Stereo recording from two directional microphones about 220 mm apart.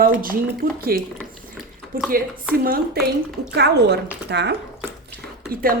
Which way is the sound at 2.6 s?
40° right (ahead or behind).